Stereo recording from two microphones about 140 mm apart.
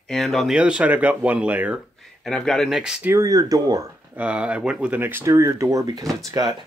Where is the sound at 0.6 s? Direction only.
10° right (ahead or behind).